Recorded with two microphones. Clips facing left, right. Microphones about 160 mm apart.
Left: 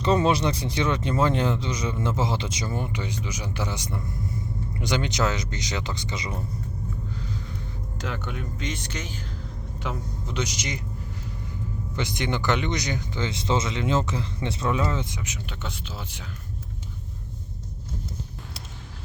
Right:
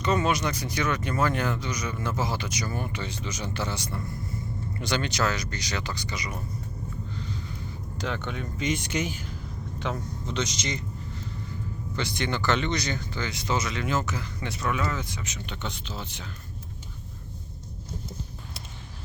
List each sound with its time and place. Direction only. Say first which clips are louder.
0.0 s speech: left 4 dB; 30° left (ahead or behind)
7.1 s a sound: left 1 dB; 5° left (ahead or behind)
8.6 s speech: right 9 dB; 15° right (ahead or behind)
9.7 s speech: right 1 dB; 5° left (ahead or behind)
11.9 s speech: left 1 dB; 15° left (ahead or behind)